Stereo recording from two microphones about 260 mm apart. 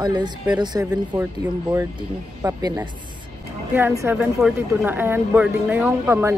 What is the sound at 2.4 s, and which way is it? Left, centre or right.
Speech, centre.